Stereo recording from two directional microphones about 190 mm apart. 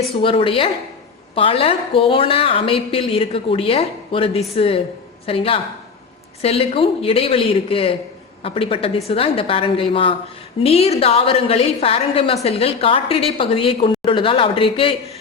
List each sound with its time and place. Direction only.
0.2 s a woman's voice: 25° left (ahead or behind)